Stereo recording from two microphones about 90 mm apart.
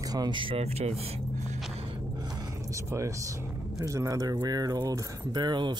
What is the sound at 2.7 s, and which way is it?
Speech, 35° right (ahead or behind).